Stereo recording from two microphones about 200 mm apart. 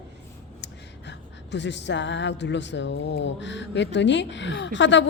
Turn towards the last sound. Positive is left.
turn(degrees=65)  # may be behind; listen again after turning